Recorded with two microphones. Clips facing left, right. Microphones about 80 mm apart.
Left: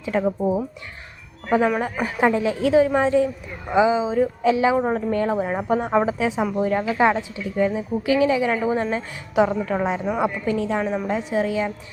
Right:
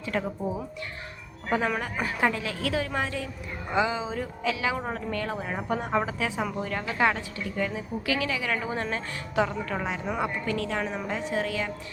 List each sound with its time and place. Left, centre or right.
0.0 s speech: centre
0.3 s a woman's voice: left
1.5 s speech: centre
2.0 s a woman's voice: centre
4.4 s a woman's voice: left
8.5 s a woman's voice: centre